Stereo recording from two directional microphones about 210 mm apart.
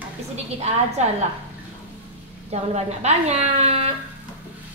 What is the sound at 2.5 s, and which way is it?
A woman's voice, 30° right (ahead or behind).